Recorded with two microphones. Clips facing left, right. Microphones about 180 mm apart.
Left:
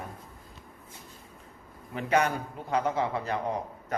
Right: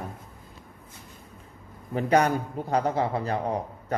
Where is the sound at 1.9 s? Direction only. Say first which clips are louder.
Right 4 dB; 40° right (ahead or behind).